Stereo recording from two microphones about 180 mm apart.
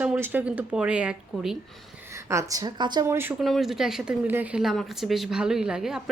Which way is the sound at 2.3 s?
15° right (ahead or behind).